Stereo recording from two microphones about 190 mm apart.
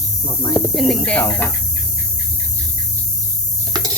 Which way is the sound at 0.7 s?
Centre (ahead or behind).